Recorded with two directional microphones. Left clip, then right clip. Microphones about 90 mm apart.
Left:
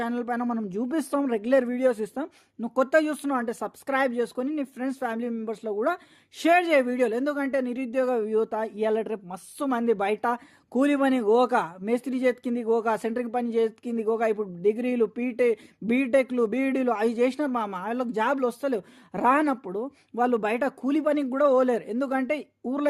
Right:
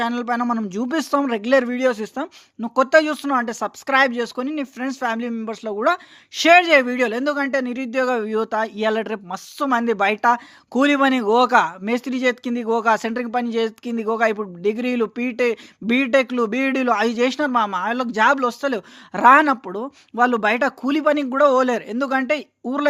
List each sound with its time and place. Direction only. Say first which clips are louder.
0.0 s a man's voice: right 7 dB; 30° right (ahead or behind)
0.7 s speech: right 5 dB; 50° right (ahead or behind)
1.1 s speech: right 6 dB; 30° right (ahead or behind); by 9.1 s 45° right (ahead or behind)
9.6 s speech: right 6 dB; 20° right (ahead or behind)